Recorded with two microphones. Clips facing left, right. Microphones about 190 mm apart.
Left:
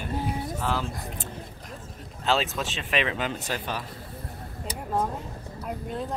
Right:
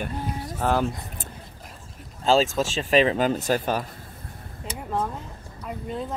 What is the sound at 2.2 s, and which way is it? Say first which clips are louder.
Speech: right 6 dB; 40° right (ahead or behind).